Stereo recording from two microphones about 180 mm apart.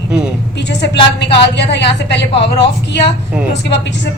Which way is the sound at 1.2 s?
70° left (ahead or behind).